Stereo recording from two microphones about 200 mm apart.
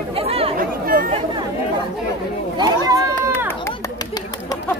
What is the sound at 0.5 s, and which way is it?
Chatter, 45° right (ahead or behind).